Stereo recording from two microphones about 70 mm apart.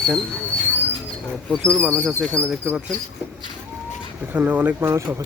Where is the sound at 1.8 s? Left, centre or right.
Right.